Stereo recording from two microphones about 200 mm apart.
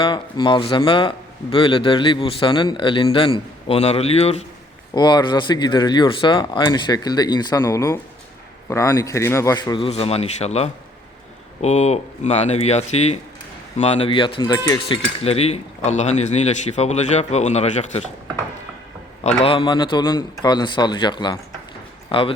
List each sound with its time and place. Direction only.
0.0 s a man's voice: 25° left (ahead or behind)
11.6 s cutlery: 35° left (ahead or behind)
19.5 s a man's voice: 25° left (ahead or behind)